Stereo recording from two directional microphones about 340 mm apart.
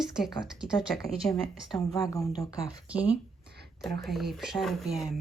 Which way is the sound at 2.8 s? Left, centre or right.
Centre.